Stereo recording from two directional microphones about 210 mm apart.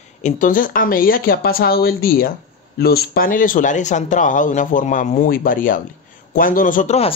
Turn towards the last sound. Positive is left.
turn(degrees=30)  # may be behind; listen again after turning